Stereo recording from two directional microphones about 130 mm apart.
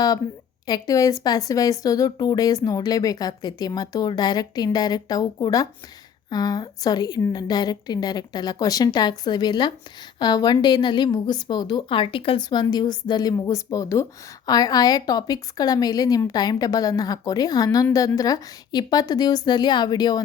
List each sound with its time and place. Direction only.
0.7 s a woman's voice: 25° left (ahead or behind)